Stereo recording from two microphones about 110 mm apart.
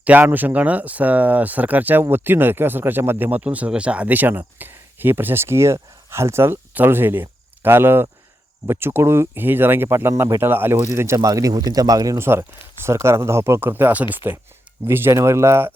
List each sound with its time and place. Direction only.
0.0 s speech: 15° right (ahead or behind)